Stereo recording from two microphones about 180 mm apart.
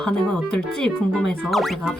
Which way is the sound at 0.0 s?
5° left (ahead or behind).